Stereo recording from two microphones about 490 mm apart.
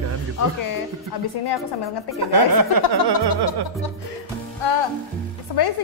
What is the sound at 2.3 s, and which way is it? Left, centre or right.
Speech, right.